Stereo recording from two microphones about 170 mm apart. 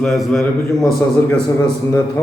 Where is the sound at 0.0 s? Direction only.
5° left (ahead or behind).